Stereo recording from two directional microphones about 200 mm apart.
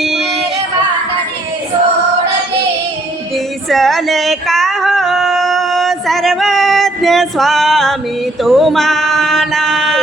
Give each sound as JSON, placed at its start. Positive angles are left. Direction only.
{"t": 3.3, "sound": "female singing", "side_deg": 0}
{"t": 8.4, "sound": "male singing", "side_deg": 0}